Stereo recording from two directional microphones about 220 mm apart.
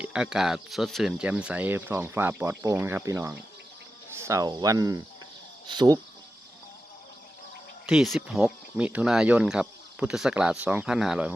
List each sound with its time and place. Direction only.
0.0 s speech: 5° right (ahead or behind)
7.9 s speech: centre (ahead or behind)